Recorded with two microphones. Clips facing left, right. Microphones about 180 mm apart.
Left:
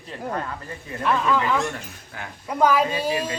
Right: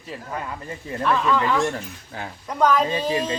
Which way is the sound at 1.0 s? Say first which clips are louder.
Right 1 dB; 5° left (ahead or behind).